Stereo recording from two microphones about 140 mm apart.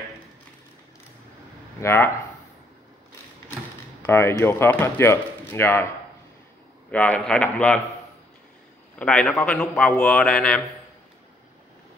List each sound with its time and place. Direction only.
1.8 s speech: 15° left (ahead or behind)
4.0 s speech: 15° left (ahead or behind)
6.9 s speech: 10° left (ahead or behind)
8.9 s speech: 10° left (ahead or behind)